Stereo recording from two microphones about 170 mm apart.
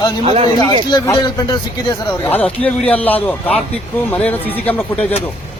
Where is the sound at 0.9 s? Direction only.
25° left (ahead or behind).